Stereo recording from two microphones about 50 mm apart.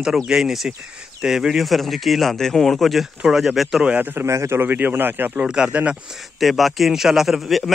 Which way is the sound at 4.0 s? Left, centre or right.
Right.